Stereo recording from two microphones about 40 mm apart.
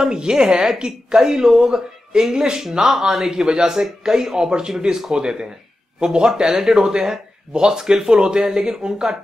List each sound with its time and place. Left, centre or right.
0.0 s a woman's voice: centre